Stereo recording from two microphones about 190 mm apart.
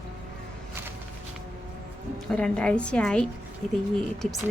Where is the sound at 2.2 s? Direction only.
5° left (ahead or behind).